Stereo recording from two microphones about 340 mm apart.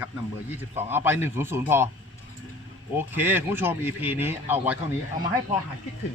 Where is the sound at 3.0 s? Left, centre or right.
Centre.